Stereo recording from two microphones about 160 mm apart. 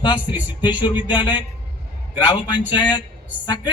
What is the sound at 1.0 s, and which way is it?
A man's voice, 30° left (ahead or behind).